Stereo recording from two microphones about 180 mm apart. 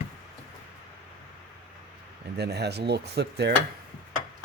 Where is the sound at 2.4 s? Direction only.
65° right (ahead or behind).